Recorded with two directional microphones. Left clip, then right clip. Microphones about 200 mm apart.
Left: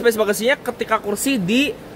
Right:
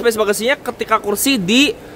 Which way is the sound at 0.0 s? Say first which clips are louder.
Right 2 dB; 10° right (ahead or behind).